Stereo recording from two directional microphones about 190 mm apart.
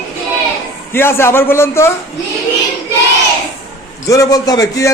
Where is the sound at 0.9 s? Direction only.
10° left (ahead or behind).